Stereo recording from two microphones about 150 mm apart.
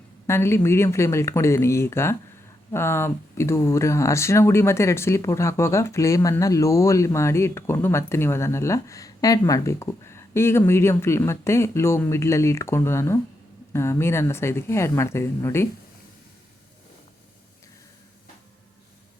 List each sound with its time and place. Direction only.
0.3 s speech: 15° left (ahead or behind)